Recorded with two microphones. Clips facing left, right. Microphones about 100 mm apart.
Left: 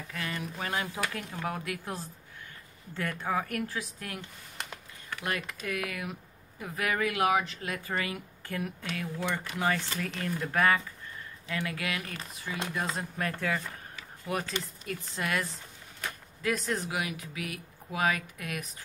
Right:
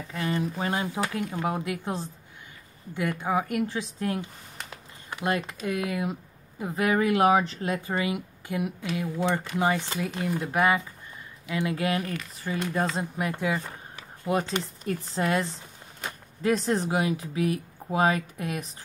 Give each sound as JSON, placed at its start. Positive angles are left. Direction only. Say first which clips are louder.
{"t": 0.1, "sound": "speech", "louder": "right 9 dB", "side_deg": -30}
{"t": 13.2, "sound": "speech", "louder": "right 3 dB", "side_deg": -15}